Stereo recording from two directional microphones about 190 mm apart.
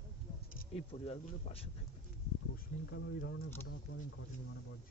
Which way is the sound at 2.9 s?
65° left (ahead or behind).